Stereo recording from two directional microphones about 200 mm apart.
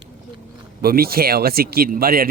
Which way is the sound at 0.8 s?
50° right (ahead or behind).